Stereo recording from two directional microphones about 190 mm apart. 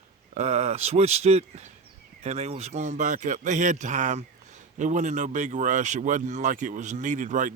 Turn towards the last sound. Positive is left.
turn(degrees=-40)  # may be behind; listen again after turning